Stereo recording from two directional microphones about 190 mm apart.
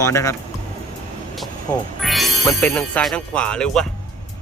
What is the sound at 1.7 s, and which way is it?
Speech, 10° left (ahead or behind).